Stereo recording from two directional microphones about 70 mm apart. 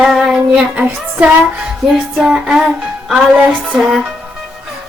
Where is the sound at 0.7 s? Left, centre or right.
Centre.